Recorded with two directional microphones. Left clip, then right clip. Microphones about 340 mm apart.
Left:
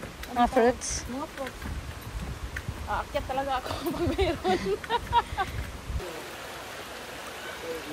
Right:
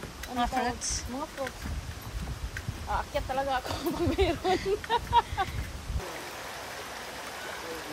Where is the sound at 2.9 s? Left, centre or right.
Right.